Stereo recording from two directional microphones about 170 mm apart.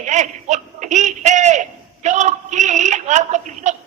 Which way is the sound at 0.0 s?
45° right (ahead or behind).